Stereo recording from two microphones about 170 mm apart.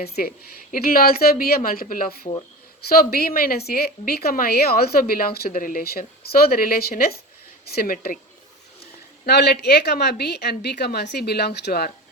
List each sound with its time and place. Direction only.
0.0 s a woman's voice: 60° left (ahead or behind)
9.2 s a woman's voice: 75° left (ahead or behind)